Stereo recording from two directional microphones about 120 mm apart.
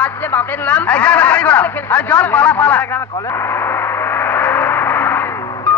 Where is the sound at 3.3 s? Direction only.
20° left (ahead or behind).